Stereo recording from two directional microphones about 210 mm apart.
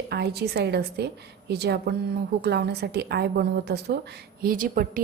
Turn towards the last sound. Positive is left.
turn(degrees=-40)  # may be behind; listen again after turning